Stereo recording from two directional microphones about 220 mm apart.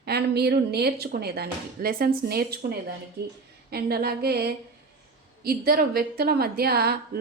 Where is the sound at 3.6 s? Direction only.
45° right (ahead or behind).